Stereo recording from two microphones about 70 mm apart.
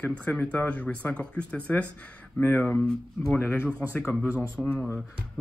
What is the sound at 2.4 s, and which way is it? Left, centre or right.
Speech, left.